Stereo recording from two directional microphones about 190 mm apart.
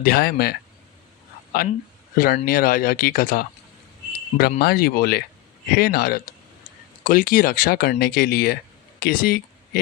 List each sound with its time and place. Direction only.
0.0 s speech: 55° left (ahead or behind)
1.5 s speech: 50° left (ahead or behind)